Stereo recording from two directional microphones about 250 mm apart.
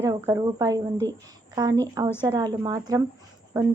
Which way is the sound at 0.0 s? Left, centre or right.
Centre.